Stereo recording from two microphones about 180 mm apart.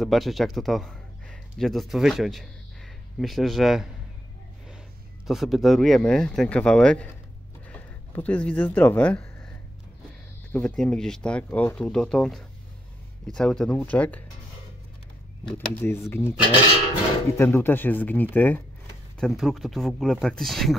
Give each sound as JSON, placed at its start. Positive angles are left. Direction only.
{"t": 0.0, "sound": "a man's voice", "side_deg": 0}
{"t": 5.2, "sound": "speech", "side_deg": 0}
{"t": 7.6, "sound": "a sound", "side_deg": 10}
{"t": 10.5, "sound": "speech", "side_deg": 5}
{"t": 15.4, "sound": "speech", "side_deg": 10}
{"t": 17.4, "sound": "speech", "side_deg": 15}